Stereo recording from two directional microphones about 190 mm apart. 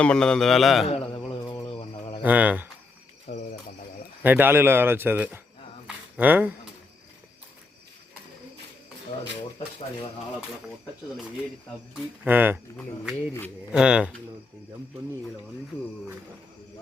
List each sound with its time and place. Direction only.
0.0 s a man's voice: 5° left (ahead or behind)
0.9 s a man's voice: 30° left (ahead or behind)
1.5 s mantra: 20° left (ahead or behind)
2.2 s speech: 10° right (ahead or behind)
3.2 s speech: 35° left (ahead or behind)
4.2 s speech: 10° right (ahead or behind)
12.2 s speech: 10° right (ahead or behind)
13.7 s a man's voice: 5° right (ahead or behind)